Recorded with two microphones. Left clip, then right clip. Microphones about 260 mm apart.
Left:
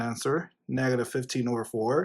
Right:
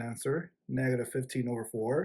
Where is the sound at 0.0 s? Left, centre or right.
Centre.